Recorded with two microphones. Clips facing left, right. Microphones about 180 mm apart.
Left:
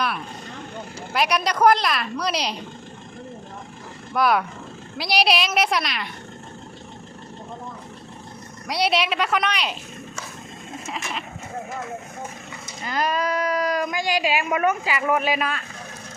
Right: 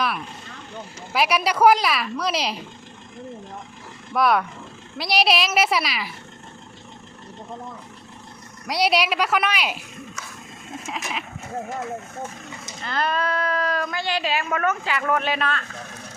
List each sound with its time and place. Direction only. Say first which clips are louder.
1.1 s a woman's voice: right 1 dB; 5° right (ahead or behind)
4.1 s a woman's voice: even; centre (ahead or behind)
8.6 s a woman's voice: right 1 dB; centre (ahead or behind)
10.8 s a sound: right 1 dB; 5° right (ahead or behind)
12.8 s a woman's voice: left 1 dB; 10° left (ahead or behind)